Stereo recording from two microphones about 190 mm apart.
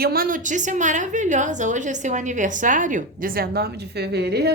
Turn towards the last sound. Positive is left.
turn(degrees=-60)  # may be behind; listen again after turning